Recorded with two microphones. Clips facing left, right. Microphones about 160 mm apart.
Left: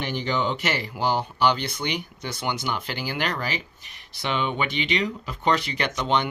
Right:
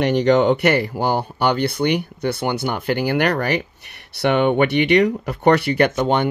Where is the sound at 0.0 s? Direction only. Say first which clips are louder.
Right 11 dB; 70° right (ahead or behind).